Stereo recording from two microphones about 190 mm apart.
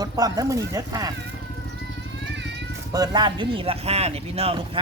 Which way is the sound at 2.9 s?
20° right (ahead or behind).